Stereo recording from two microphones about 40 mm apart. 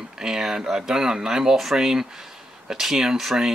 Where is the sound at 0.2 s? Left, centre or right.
Centre.